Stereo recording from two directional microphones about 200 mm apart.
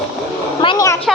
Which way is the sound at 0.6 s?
20° left (ahead or behind).